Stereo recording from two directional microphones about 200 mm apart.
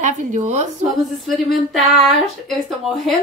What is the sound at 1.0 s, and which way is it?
Speech, centre (ahead or behind).